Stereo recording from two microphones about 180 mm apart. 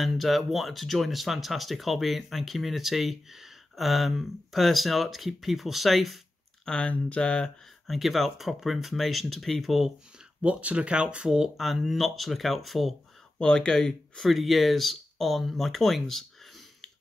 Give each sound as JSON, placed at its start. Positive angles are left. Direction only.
{"t": 0.0, "sound": "speech", "side_deg": 0}